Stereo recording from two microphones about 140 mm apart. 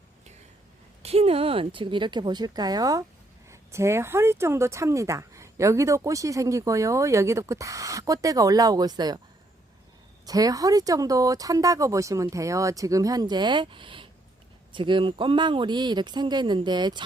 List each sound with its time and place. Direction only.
1.0 s speech: 45° right (ahead or behind); by 9.1 s 30° right (ahead or behind)
10.2 s speech: 25° right (ahead or behind)